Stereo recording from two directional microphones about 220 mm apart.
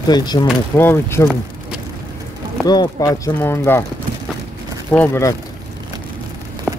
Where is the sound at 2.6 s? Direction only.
20° left (ahead or behind).